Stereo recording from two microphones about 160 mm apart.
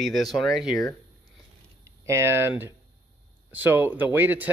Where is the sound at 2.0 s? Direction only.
15° right (ahead or behind).